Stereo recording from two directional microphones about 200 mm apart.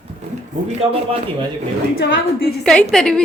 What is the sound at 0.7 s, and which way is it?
Speech, 30° right (ahead or behind).